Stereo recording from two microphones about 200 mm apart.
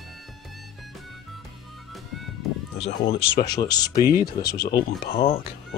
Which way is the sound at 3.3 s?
20° left (ahead or behind).